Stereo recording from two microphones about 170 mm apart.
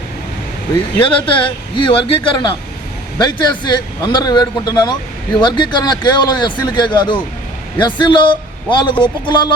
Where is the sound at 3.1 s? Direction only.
25° left (ahead or behind).